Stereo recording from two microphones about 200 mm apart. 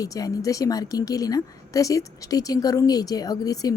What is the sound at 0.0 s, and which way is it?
A woman's voice, 15° left (ahead or behind).